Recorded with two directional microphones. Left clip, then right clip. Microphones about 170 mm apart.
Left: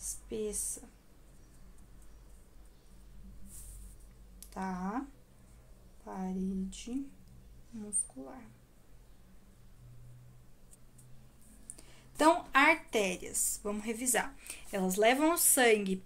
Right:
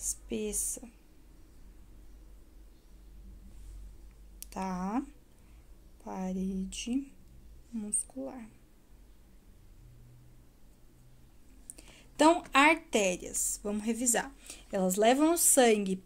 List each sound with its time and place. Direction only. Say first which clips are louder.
0.1 s speech: even; 45° right (ahead or behind)
4.4 s speech: right 2 dB; 50° right (ahead or behind)
6.0 s a woman's voice: right 2 dB; 45° right (ahead or behind)
11.7 s a woman's voice: right 3 dB; 40° right (ahead or behind)